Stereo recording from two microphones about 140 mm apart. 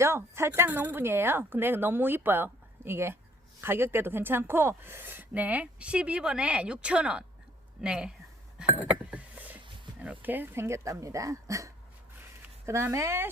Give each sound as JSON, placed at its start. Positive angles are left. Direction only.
{"t": 0.0, "sound": "speech", "side_deg": -20}
{"t": 8.8, "sound": "a sound", "side_deg": -10}
{"t": 10.0, "sound": "speech", "side_deg": -10}